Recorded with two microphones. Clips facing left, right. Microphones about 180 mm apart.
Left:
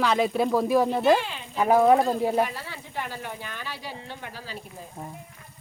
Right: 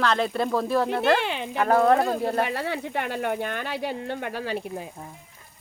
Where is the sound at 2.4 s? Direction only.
65° right (ahead or behind).